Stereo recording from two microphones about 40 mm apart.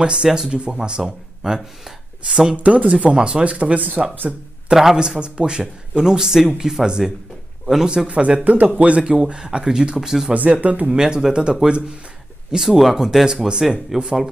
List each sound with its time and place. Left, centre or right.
0.0 s speech: right
2.2 s speech: centre
2.5 s speech: right
4.9 s speech: right
8.1 s speech: right
9.2 s speech: centre
10.3 s speech: right
10.9 s speech: centre
12.4 s speech: centre